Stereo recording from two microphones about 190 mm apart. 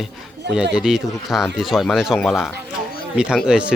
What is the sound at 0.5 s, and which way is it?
Speech, 5° right (ahead or behind).